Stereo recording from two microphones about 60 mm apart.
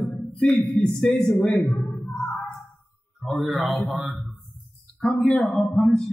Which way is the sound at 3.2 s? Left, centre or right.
Centre.